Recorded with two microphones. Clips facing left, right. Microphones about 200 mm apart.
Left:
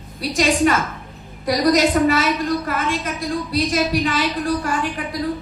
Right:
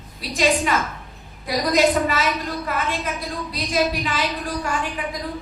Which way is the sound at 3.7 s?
45° left (ahead or behind).